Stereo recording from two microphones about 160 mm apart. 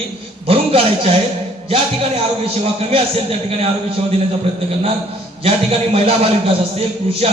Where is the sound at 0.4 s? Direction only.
35° right (ahead or behind).